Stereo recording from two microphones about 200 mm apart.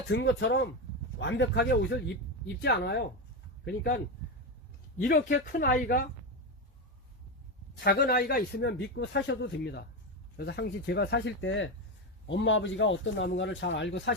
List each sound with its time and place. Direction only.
0.1 s speech: 60° left (ahead or behind)
5.0 s speech: 50° left (ahead or behind)
7.9 s speech: 50° left (ahead or behind)